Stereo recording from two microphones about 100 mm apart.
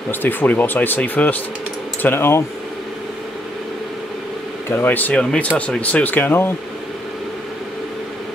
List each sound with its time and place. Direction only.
0.1 s speech: 20° left (ahead or behind)
4.6 s speech: 20° left (ahead or behind)